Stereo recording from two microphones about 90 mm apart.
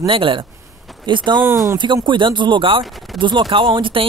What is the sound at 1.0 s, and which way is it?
Speech, 60° right (ahead or behind).